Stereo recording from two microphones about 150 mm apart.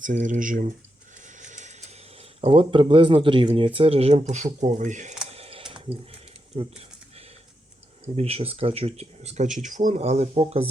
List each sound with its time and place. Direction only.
0.0 s speech: 60° right (ahead or behind)
1.4 s a sound: 55° right (ahead or behind)
2.4 s speech: 35° right (ahead or behind); by 5.1 s 55° right (ahead or behind)
5.3 s a sound: 40° right (ahead or behind)
6.5 s speech: 40° right (ahead or behind)
8.0 s speech: 40° right (ahead or behind)